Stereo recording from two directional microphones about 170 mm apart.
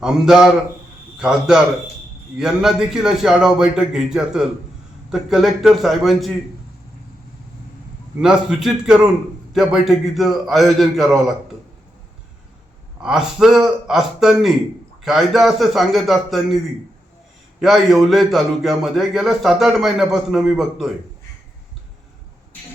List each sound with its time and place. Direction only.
0.0 s a man's voice: 5° right (ahead or behind)
8.2 s a man's voice: 5° right (ahead or behind)
13.0 s a man's voice: 5° right (ahead or behind)
17.6 s a man's voice: centre (ahead or behind)